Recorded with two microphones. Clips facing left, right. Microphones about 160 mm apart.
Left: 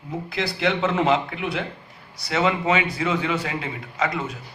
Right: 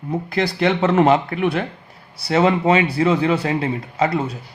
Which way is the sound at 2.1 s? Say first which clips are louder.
Right 6 dB; 35° right (ahead or behind).